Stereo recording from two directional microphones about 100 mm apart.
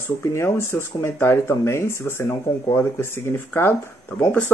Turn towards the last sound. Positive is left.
turn(degrees=20)  # may be behind; listen again after turning